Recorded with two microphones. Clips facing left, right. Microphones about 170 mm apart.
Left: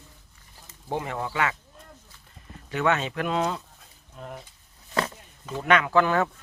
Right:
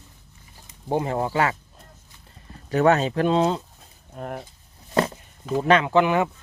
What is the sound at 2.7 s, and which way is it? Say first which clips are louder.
Speech: right 6 dB; 40° right (ahead or behind).